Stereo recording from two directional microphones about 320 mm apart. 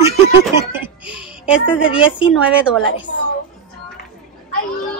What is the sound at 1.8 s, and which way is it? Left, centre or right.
Speech, centre.